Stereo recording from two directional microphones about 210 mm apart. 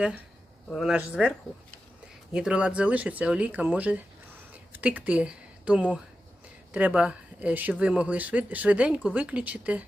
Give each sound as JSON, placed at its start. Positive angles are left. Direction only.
{"t": 0.7, "sound": "speech", "side_deg": 0}
{"t": 2.3, "sound": "speech", "side_deg": -5}